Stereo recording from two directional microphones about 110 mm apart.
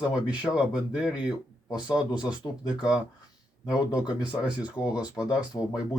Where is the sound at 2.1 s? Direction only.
40° left (ahead or behind).